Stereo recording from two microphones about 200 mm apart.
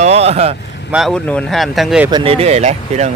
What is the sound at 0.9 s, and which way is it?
Speech, centre (ahead or behind).